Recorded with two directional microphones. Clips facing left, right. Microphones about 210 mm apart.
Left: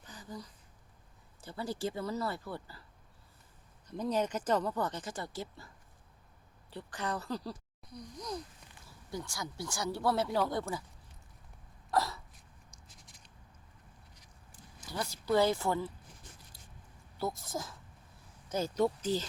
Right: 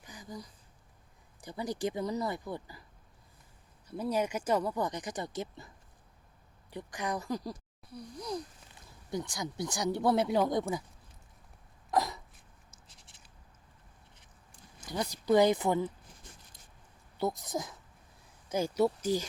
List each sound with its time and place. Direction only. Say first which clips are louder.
0.0 s a sound: right 1 dB; 15° right (ahead or behind)
1.4 s speech: right 2 dB; 15° right (ahead or behind)
3.8 s speech: right 1 dB; 10° right (ahead or behind)
11.9 s a sound: right 2 dB; 15° right (ahead or behind)
14.8 s speech: right 4 dB; 15° right (ahead or behind)
17.2 s speech: right 4 dB; 20° right (ahead or behind)